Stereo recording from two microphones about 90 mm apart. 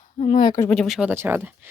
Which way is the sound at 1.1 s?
20° right (ahead or behind).